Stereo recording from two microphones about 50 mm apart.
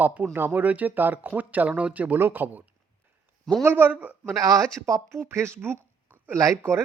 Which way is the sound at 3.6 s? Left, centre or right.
Right.